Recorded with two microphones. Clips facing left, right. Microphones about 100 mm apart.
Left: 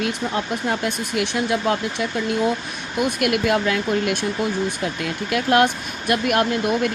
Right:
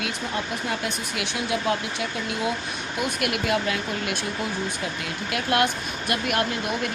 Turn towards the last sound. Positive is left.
turn(degrees=50)  # may be behind; listen again after turning